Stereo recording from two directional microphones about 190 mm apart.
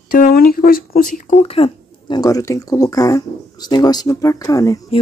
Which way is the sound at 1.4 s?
30° left (ahead or behind).